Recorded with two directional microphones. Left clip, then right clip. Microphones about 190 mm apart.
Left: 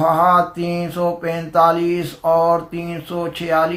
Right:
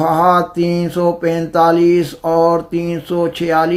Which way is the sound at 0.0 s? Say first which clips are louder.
Right 2 dB; 45° right (ahead or behind).